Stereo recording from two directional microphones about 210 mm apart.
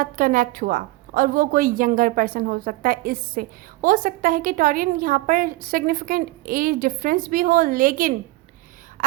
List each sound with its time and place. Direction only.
0.0 s a woman's voice: 40° right (ahead or behind)
9.0 s throat clearing: 35° right (ahead or behind)